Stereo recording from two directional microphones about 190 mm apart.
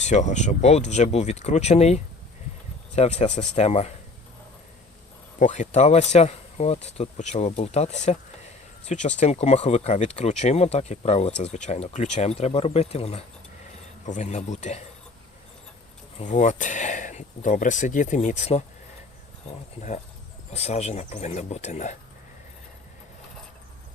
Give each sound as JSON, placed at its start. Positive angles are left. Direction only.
{"t": 0.0, "sound": "speech", "side_deg": 40}
{"t": 5.4, "sound": "speech", "side_deg": 40}
{"t": 16.1, "sound": "speech", "side_deg": 40}